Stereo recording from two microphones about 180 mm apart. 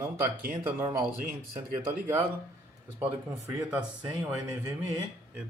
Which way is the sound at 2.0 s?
10° right (ahead or behind).